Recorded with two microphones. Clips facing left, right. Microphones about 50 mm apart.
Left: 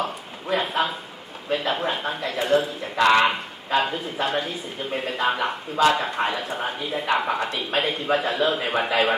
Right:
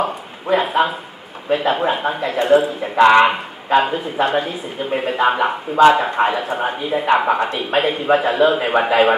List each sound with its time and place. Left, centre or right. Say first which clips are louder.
0.0 s speech: right 6 dB; centre
3.0 s speech: right 7 dB; right
7.4 s speech: right 6 dB; centre